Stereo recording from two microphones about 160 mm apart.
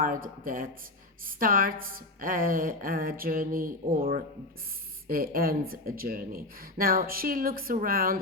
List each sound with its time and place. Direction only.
0.0 s speech: 60° right (ahead or behind)